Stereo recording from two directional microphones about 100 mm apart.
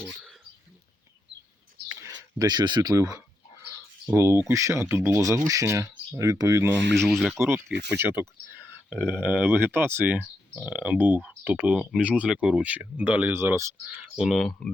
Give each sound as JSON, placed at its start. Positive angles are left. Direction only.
{"t": 0.0, "sound": "a sound", "side_deg": -5}
{"t": 2.4, "sound": "speech", "side_deg": -45}
{"t": 4.1, "sound": "speech", "side_deg": -25}
{"t": 7.1, "sound": "speech", "side_deg": -5}
{"t": 7.9, "sound": "speech", "side_deg": -25}
{"t": 13.8, "sound": "speech", "side_deg": -5}